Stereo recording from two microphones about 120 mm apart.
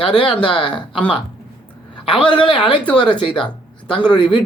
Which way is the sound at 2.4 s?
45° left (ahead or behind).